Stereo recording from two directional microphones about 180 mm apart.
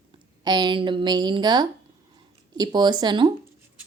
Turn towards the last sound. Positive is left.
turn(degrees=-25)  # may be behind; listen again after turning